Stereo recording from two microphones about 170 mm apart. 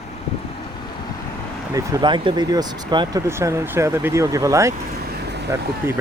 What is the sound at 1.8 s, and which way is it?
Speech, 20° right (ahead or behind).